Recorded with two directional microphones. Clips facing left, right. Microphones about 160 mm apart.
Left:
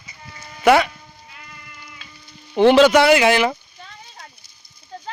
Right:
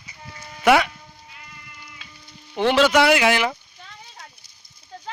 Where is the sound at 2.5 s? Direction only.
25° left (ahead or behind).